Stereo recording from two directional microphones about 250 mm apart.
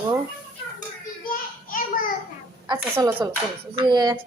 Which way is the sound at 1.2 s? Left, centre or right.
Left.